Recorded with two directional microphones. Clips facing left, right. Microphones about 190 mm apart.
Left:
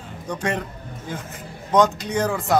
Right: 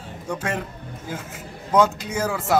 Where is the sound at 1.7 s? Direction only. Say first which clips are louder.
Left 1 dB; 5° right (ahead or behind).